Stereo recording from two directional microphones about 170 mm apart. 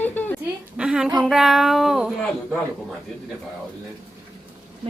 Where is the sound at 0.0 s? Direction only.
10° left (ahead or behind).